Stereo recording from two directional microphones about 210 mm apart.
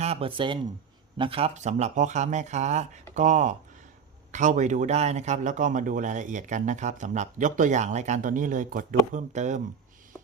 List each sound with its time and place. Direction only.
0.0 s a man's voice: 30° right (ahead or behind)